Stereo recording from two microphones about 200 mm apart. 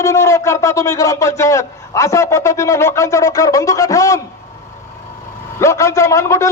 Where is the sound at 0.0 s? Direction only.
15° left (ahead or behind).